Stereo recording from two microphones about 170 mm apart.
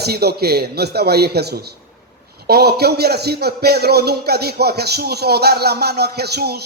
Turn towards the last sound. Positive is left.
turn(degrees=-70)  # may be behind; listen again after turning